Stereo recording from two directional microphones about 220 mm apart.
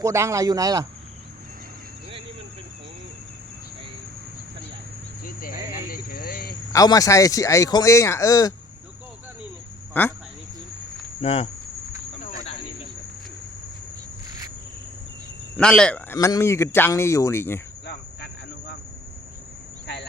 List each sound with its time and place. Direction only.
0.0 s a man's voice: 15° right (ahead or behind)
5.2 s cricket: 40° left (ahead or behind)
6.7 s speech: 15° left (ahead or behind)
10.0 s speech: 10° left (ahead or behind)
11.2 s cricket: 25° left (ahead or behind)
15.5 s speech: 5° left (ahead or behind)